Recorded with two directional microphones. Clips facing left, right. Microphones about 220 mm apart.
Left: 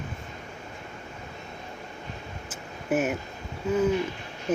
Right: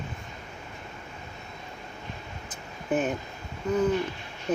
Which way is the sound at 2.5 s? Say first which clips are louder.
Left 1 dB; 5° left (ahead or behind).